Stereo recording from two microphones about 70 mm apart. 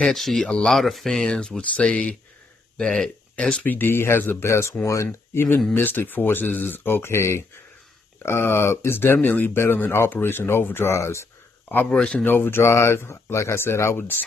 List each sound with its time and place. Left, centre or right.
0.0 s speech: centre
3.6 s speech: left
11.9 s speech: centre
12.3 s speech: left